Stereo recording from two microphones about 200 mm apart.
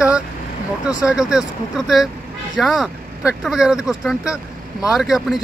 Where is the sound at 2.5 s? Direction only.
Centre (ahead or behind).